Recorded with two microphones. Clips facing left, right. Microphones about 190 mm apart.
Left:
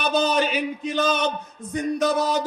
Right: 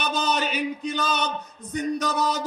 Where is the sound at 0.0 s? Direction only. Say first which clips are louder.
Left 5 dB; 40° left (ahead or behind).